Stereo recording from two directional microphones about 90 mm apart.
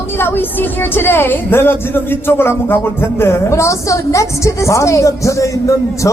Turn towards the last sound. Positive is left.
turn(degrees=35)  # may be behind; listen again after turning